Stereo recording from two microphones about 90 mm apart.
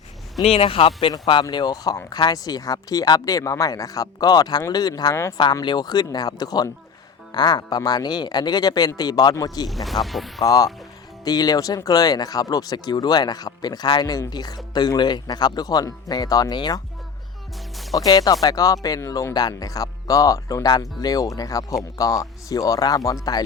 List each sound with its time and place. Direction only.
0.5 s speech: 90° left
1.3 s speech: 60° left (ahead or behind)
9.6 s speech: centre (ahead or behind)
10.4 s speech: 45° left (ahead or behind)
17.9 s speech: 45° left (ahead or behind)